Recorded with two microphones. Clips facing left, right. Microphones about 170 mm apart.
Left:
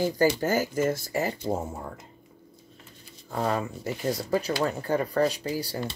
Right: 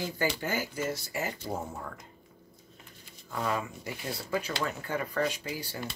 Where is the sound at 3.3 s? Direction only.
35° left (ahead or behind).